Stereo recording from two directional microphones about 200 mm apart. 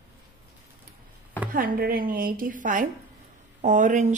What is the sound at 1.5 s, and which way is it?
A woman's voice, 45° right (ahead or behind).